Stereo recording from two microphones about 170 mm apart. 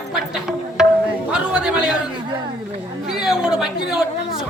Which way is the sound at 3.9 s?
Centre (ahead or behind).